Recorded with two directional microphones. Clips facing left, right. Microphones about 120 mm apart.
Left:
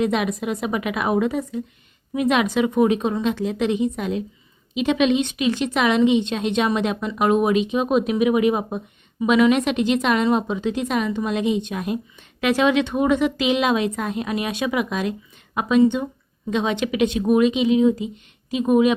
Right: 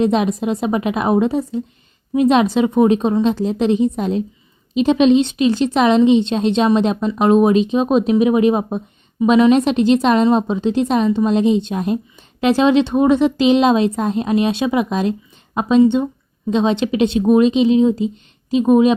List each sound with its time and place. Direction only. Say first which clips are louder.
0.0 s a woman's voice: right 5 dB; 30° right (ahead or behind)